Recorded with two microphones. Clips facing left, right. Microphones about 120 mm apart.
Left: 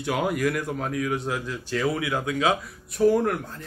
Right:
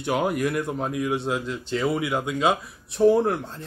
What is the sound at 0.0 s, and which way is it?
A man's voice, 20° right (ahead or behind).